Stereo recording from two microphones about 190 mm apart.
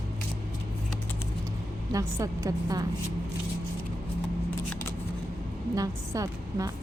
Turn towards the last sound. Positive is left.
turn(degrees=-15)  # may be behind; listen again after turning